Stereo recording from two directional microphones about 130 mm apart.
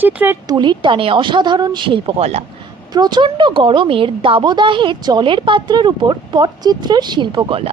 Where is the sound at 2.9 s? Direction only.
35° right (ahead or behind).